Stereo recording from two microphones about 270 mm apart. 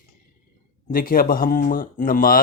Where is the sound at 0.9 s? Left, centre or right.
Left.